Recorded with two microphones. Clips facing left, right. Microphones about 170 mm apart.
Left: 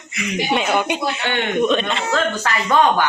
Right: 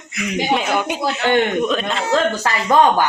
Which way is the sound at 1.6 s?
5° right (ahead or behind).